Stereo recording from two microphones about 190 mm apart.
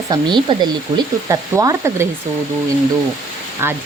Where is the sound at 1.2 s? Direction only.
15° right (ahead or behind).